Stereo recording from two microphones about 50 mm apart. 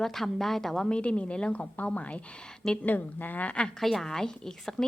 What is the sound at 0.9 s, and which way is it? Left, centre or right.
A woman's voice, left.